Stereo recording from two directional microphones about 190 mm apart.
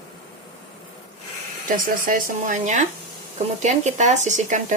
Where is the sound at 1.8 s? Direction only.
45° right (ahead or behind).